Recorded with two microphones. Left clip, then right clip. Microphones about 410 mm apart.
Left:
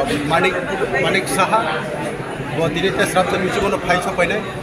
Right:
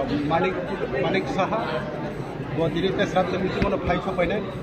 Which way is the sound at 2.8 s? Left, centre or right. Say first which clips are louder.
Left 6 dB; right.